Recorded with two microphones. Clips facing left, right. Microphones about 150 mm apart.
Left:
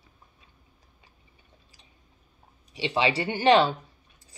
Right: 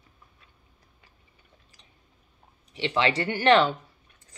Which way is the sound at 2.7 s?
15° left (ahead or behind).